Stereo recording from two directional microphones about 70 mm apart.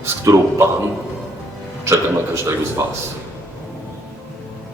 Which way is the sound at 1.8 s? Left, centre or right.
Right.